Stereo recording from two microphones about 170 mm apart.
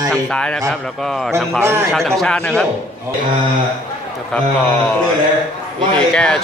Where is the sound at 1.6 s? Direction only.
15° right (ahead or behind).